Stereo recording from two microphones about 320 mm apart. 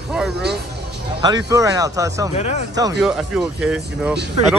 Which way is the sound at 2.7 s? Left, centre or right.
Centre.